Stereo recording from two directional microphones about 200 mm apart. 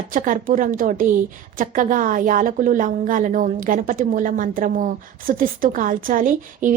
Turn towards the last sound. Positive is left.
turn(degrees=-40)  # may be behind; listen again after turning